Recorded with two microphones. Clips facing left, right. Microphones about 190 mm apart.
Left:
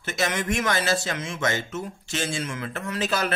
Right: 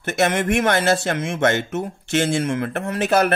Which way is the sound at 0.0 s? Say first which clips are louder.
Right 7 dB; 60° right (ahead or behind).